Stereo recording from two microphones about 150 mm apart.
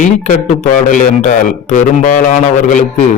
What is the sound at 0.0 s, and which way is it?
A man's voice, 55° left (ahead or behind).